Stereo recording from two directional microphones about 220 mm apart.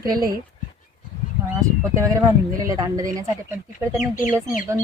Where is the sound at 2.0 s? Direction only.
15° right (ahead or behind).